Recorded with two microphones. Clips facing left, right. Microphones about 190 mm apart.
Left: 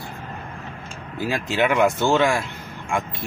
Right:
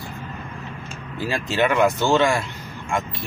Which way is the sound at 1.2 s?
10° left (ahead or behind).